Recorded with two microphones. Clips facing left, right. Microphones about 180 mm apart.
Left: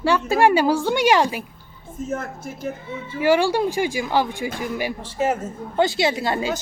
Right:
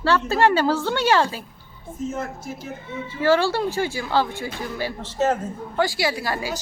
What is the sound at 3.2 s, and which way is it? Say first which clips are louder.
Speech: left 1 dB; 15° left (ahead or behind).